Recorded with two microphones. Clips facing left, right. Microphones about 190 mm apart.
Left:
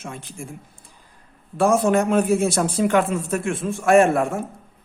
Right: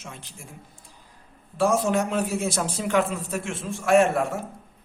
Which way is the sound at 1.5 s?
55° left (ahead or behind).